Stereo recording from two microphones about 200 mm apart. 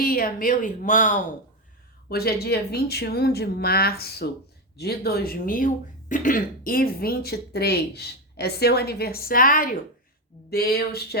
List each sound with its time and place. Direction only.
0.0 s speech: 45° left (ahead or behind)
2.0 s speech: 50° left (ahead or behind)